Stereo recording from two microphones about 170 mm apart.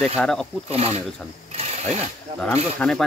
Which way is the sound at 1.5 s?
40° right (ahead or behind).